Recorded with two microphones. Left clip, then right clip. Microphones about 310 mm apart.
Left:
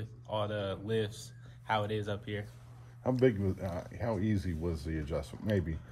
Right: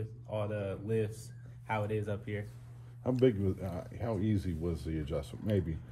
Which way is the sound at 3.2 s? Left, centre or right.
Left.